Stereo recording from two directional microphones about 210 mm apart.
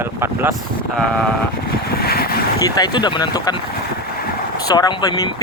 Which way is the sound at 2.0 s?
45° left (ahead or behind).